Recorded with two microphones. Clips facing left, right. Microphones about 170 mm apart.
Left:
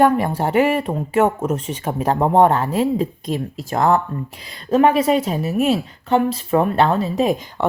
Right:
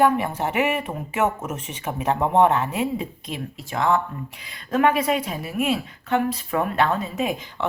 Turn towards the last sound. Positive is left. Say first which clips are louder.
# left 7 dB
turn(degrees=40)  # may be behind; listen again after turning